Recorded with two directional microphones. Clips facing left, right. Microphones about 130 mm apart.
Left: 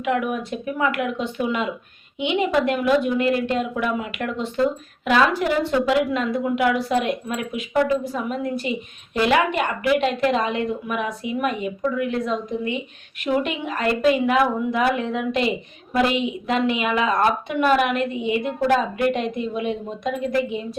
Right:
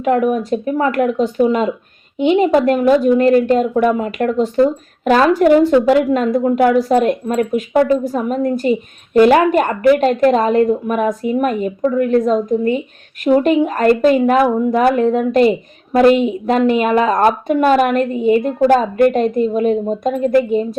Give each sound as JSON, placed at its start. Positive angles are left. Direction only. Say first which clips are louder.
{"t": 0.0, "sound": "a woman's voice", "louder": "right 8 dB", "side_deg": -40}